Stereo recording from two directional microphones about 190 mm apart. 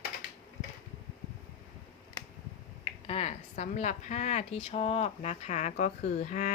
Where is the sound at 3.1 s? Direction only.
30° left (ahead or behind).